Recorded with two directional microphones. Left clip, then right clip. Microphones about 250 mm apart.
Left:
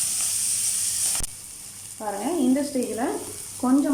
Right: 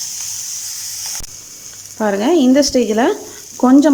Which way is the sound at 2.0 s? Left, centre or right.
Right.